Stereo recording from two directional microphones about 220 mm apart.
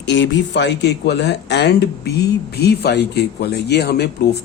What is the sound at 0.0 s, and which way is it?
Speech, 55° left (ahead or behind).